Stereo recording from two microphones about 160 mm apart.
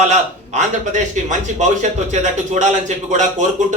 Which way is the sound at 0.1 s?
45° right (ahead or behind).